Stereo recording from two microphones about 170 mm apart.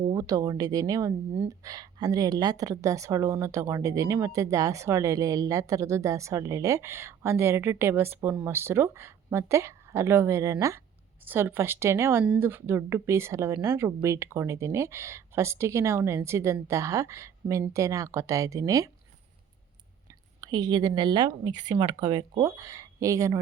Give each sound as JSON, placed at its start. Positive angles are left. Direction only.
{"t": 0.1, "sound": "speech", "side_deg": -20}
{"t": 20.4, "sound": "speech", "side_deg": -25}